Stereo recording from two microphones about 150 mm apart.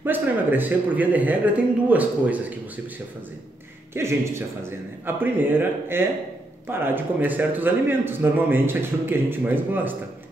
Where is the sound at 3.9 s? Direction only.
15° right (ahead or behind).